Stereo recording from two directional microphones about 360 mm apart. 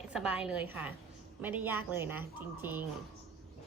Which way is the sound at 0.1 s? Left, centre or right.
Centre.